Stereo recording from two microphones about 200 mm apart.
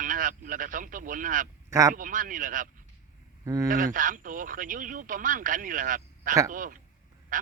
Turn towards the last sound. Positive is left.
turn(degrees=-40)  # may be behind; listen again after turning